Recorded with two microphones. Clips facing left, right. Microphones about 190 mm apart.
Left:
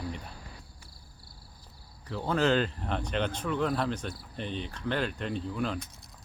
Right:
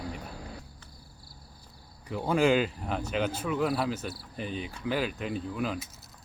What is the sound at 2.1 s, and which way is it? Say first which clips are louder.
Speech: right 2 dB; 10° right (ahead or behind).